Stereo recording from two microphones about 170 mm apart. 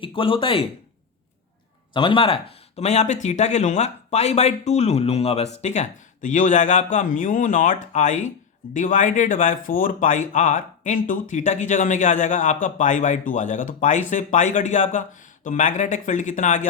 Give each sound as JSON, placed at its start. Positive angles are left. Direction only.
{"t": 0.0, "sound": "speech", "side_deg": 30}
{"t": 1.9, "sound": "speech", "side_deg": 25}